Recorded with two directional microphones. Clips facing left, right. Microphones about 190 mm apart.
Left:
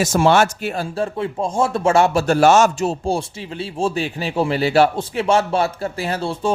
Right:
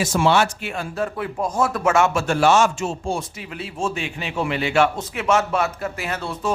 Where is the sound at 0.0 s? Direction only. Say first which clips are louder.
Left 3 dB; 45° left (ahead or behind).